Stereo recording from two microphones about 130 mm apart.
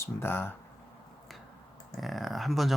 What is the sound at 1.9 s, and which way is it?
Speech, centre (ahead or behind).